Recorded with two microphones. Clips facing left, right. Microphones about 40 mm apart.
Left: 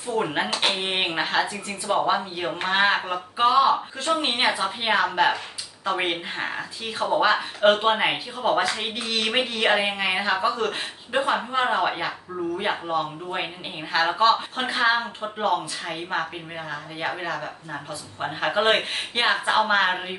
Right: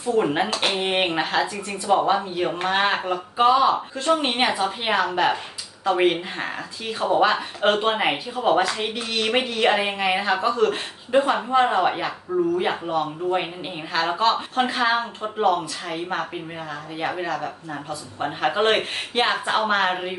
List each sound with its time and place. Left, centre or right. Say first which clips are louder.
0.2 s speech: even; centre